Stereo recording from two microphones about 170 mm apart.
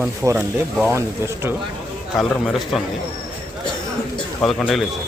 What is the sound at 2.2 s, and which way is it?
Speech, centre (ahead or behind).